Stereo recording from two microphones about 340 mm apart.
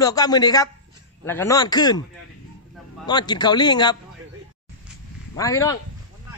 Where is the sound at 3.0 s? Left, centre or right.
Centre.